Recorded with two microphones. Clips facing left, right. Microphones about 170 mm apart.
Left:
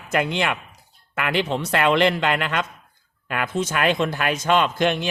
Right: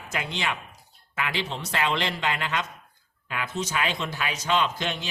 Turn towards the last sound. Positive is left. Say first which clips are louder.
# left 7 dB
turn(degrees=55)  # may be behind; listen again after turning